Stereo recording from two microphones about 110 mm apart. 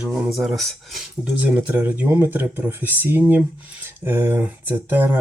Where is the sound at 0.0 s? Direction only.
5° right (ahead or behind).